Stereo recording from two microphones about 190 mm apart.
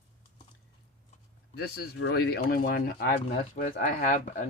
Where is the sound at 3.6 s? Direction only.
40° left (ahead or behind).